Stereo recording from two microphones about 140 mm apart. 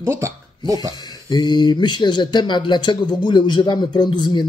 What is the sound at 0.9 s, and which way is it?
Speech, 30° left (ahead or behind).